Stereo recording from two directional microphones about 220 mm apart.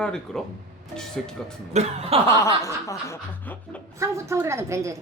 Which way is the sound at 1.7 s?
30° right (ahead or behind).